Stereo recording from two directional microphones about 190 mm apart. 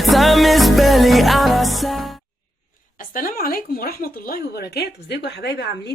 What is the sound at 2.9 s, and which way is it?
Speech, 45° left (ahead or behind).